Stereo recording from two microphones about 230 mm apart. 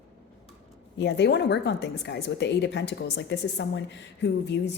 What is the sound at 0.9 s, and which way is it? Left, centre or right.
A woman's voice, left.